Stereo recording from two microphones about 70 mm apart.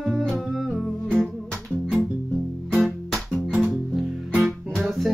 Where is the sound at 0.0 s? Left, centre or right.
Centre.